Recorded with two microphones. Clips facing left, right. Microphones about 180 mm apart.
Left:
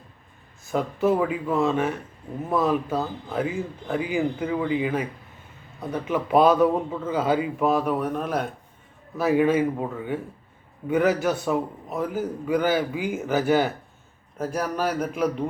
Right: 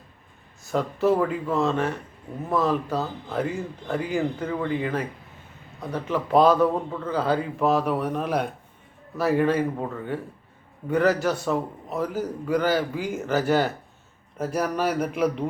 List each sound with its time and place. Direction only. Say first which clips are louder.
0.7 s a man's voice: even; centre (ahead or behind)